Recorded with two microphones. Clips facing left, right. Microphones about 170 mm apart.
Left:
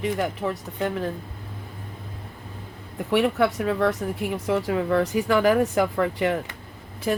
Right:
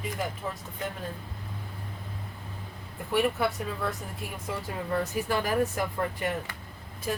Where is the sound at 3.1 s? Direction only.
85° left.